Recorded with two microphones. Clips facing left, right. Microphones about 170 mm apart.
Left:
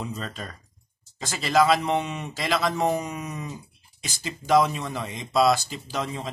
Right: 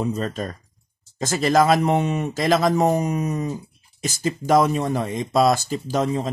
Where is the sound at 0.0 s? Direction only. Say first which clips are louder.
Right 9 dB; 45° right (ahead or behind).